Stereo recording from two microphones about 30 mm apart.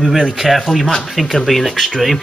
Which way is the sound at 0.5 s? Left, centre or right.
Centre.